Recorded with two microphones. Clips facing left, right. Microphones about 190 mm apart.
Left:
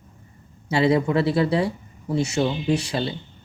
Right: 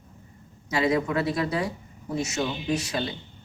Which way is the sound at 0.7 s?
30° left (ahead or behind).